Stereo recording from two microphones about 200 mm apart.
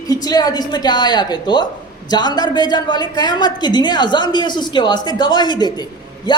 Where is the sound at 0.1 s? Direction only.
20° left (ahead or behind).